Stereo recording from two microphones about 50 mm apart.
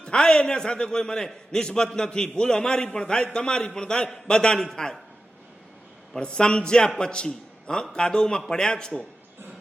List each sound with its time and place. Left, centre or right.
0.0 s a man's voice: centre
6.1 s a man's voice: centre